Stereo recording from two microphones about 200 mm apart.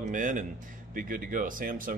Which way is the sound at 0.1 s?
40° right (ahead or behind).